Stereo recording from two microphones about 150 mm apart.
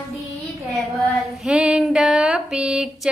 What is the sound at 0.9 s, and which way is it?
Female singing, 5° right (ahead or behind).